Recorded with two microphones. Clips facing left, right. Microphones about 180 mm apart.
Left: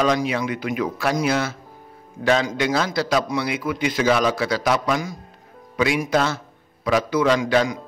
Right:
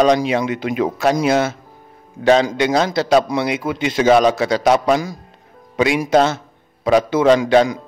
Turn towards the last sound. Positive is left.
turn(degrees=-30)  # may be behind; listen again after turning